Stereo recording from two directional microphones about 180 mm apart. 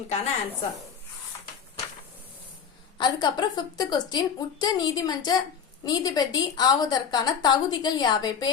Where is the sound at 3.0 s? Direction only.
25° left (ahead or behind).